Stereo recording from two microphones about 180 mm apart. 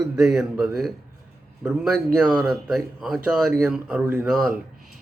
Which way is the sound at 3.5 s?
10° right (ahead or behind).